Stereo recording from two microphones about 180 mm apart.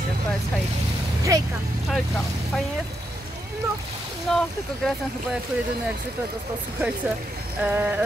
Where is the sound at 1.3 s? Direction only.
20° right (ahead or behind).